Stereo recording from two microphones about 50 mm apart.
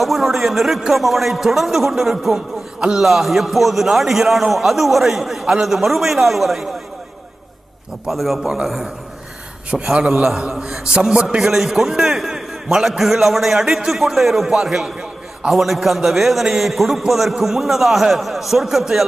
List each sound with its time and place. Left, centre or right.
0.0 s a man's voice: centre
2.3 s a sound: centre
3.0 s a man's voice: centre
8.1 s a man's voice: centre
9.9 s a man's voice: centre